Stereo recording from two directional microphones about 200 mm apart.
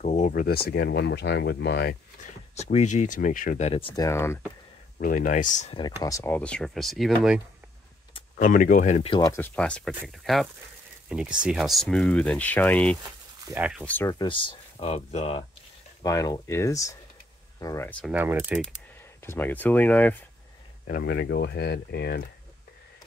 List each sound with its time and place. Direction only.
0.0 s a sound: 35° left (ahead or behind)
0.3 s speech: 50° left (ahead or behind)
2.5 s speech: 35° left (ahead or behind); by 4.4 s 15° left (ahead or behind)
4.9 s speech: 45° left (ahead or behind)
5.8 s speech: 20° left (ahead or behind); by 7.4 s centre (ahead or behind)
8.4 s speech: 40° left (ahead or behind)
9.1 s speech: 15° left (ahead or behind)
13.6 s speech: 5° right (ahead or behind)
13.8 s speech: 10° left (ahead or behind)
14.2 s speech: 25° left (ahead or behind)
16.0 s speech: 15° left (ahead or behind)
18.0 s speech: 10° right (ahead or behind)
19.2 s speech: 10° left (ahead or behind)
21.0 s speech: 55° left (ahead or behind)